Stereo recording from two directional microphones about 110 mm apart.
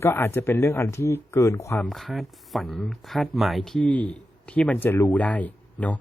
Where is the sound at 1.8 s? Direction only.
Centre (ahead or behind).